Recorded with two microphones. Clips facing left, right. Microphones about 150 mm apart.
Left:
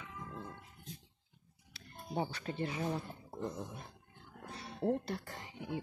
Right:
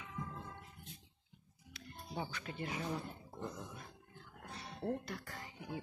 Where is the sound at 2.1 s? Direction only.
35° left (ahead or behind).